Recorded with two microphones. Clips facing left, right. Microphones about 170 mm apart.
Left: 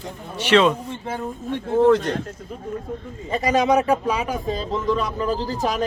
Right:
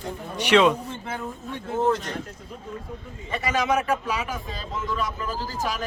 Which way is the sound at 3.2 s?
35° left (ahead or behind).